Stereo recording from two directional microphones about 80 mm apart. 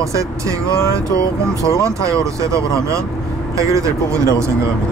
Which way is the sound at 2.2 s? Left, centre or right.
Right.